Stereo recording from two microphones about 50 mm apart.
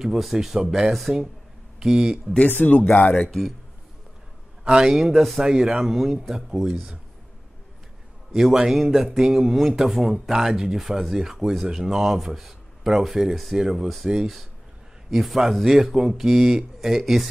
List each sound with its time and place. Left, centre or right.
0.0 s a man's voice: centre
2.6 s speech: left
3.3 s speech: centre
4.6 s a man's voice: centre
8.3 s a man's voice: centre